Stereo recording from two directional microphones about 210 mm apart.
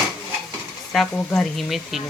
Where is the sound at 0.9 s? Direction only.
Centre (ahead or behind).